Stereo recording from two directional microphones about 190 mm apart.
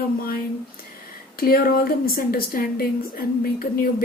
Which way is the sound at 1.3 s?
50° left (ahead or behind).